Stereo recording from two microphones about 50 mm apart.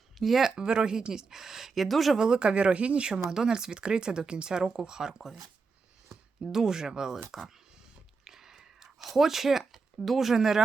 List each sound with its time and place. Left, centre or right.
0.2 s speech: centre
0.6 s speech: centre
2.1 s speech: centre
6.5 s speech: centre
8.2 s a sound: centre
10.0 s speech: centre